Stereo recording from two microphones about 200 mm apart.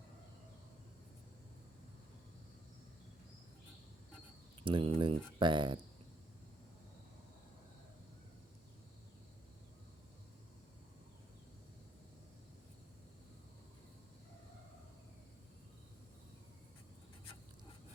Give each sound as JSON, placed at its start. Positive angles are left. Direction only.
{"t": 4.6, "sound": "speech", "side_deg": -25}